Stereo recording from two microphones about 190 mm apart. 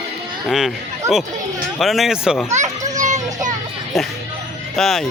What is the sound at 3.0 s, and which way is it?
Children playing, 40° right (ahead or behind).